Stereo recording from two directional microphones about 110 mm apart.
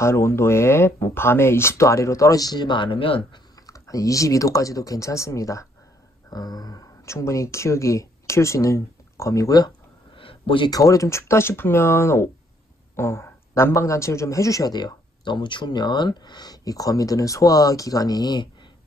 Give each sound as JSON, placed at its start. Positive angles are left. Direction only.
{"t": 0.0, "sound": "speech", "side_deg": 25}
{"t": 3.6, "sound": "speech", "side_deg": 30}
{"t": 10.1, "sound": "a sound", "side_deg": 55}
{"t": 10.7, "sound": "speech", "side_deg": 30}